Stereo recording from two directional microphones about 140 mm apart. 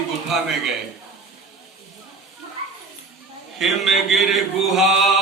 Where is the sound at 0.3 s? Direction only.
Centre (ahead or behind).